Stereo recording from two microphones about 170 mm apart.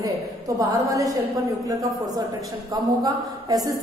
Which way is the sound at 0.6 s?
20° right (ahead or behind).